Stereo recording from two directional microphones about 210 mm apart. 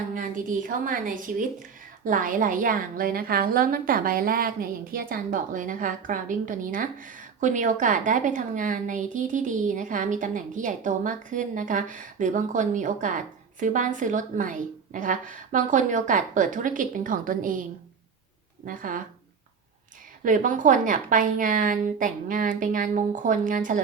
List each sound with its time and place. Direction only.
0.1 s a woman's voice: 40° right (ahead or behind)
20.2 s a woman's voice: 40° right (ahead or behind)